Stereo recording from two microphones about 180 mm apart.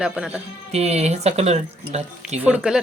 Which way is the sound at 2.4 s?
5° right (ahead or behind).